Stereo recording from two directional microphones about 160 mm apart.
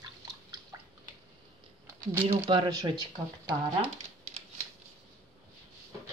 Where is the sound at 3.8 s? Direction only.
40° right (ahead or behind).